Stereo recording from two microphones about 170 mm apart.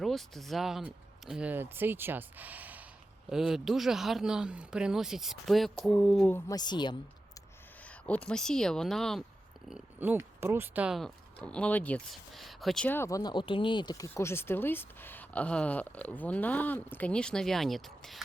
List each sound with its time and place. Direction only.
0.0 s speech: centre (ahead or behind)
6.5 s a woman's voice: 25° left (ahead or behind)
7.9 s speech: 10° left (ahead or behind)